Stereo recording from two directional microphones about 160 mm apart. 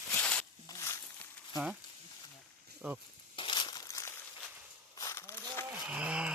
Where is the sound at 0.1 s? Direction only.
10° left (ahead or behind).